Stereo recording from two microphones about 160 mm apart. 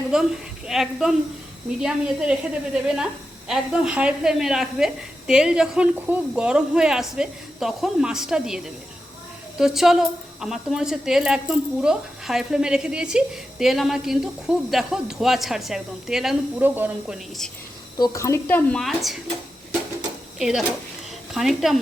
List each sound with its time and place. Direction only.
0.7 s a woman's voice: centre (ahead or behind)
17.9 s speech: 20° left (ahead or behind); by 19.1 s centre (ahead or behind)
20.4 s a woman's voice: 5° right (ahead or behind)